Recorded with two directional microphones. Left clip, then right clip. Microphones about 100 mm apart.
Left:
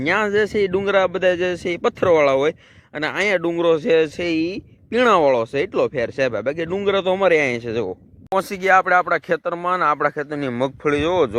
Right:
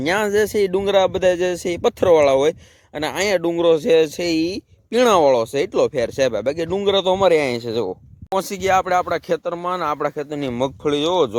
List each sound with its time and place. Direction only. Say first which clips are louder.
0.0 s speech: even; 30° right (ahead or behind)